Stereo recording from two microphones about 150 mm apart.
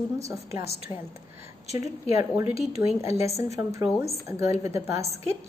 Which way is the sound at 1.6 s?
50° left (ahead or behind).